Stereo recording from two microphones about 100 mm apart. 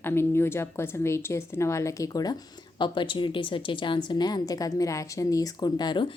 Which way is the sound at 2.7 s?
55° left (ahead or behind).